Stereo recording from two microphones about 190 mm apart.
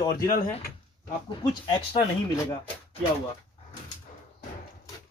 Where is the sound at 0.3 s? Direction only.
45° left (ahead or behind).